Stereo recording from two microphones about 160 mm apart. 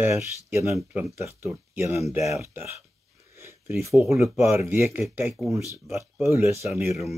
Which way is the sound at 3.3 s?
15° right (ahead or behind).